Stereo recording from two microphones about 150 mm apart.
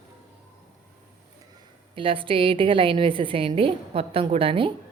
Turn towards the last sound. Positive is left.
turn(degrees=-35)  # may be behind; listen again after turning